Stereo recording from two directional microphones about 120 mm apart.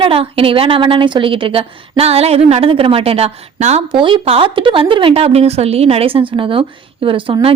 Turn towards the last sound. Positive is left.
turn(degrees=-45)  # may be behind; listen again after turning